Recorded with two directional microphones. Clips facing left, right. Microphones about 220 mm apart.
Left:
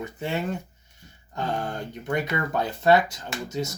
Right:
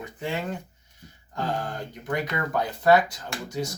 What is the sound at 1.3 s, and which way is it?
Speech, 25° left (ahead or behind).